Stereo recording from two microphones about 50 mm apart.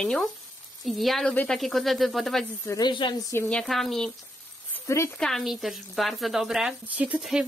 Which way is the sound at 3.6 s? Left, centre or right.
Centre.